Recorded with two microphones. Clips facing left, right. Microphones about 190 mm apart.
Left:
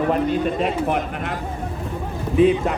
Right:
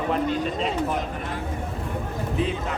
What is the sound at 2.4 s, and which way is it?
Speech, 60° left (ahead or behind).